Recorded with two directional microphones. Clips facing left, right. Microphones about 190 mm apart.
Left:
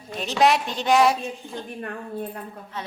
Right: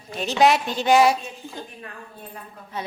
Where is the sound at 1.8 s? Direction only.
60° left (ahead or behind).